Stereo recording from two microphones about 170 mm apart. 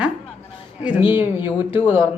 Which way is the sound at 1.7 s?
30° left (ahead or behind).